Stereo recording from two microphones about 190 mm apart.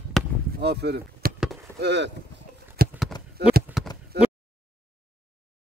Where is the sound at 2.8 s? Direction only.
50° right (ahead or behind).